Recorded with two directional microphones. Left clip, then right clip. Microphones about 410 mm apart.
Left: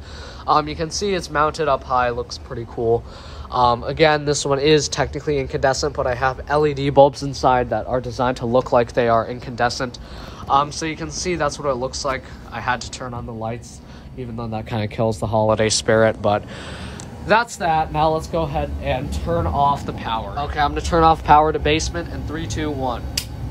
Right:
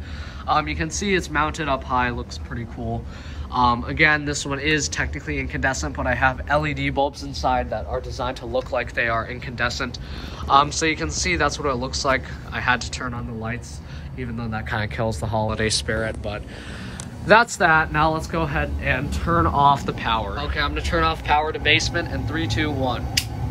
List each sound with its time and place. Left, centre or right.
0.5 s speech: centre
7.1 s speech: centre
17.3 s speech: centre